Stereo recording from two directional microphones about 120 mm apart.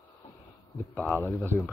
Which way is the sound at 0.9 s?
15° left (ahead or behind).